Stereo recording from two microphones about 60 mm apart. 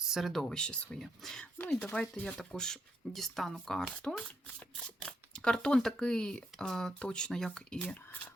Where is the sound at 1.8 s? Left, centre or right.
Left; by 7.8 s centre.